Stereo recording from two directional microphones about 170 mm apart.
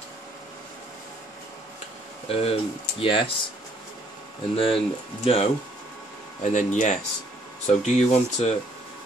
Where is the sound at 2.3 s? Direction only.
35° left (ahead or behind).